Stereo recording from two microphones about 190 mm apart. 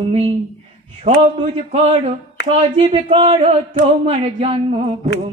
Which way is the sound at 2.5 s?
30° right (ahead or behind).